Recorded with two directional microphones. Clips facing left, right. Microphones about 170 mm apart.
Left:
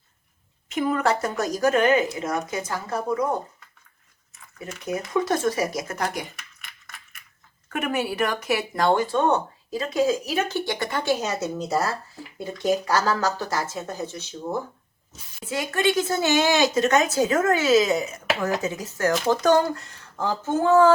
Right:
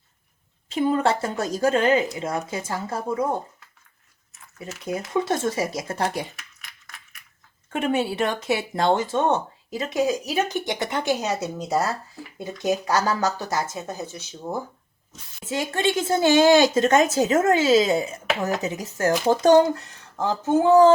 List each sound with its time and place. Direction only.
0.7 s speech: 30° right (ahead or behind)
4.8 s speech: 25° right (ahead or behind)
6.3 s coin: centre (ahead or behind)
7.7 s speech: 25° right (ahead or behind); by 14.3 s 10° right (ahead or behind)
15.4 s speech: 25° right (ahead or behind)